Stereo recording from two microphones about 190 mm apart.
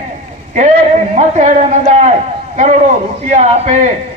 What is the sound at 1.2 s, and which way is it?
Speech, 40° right (ahead or behind).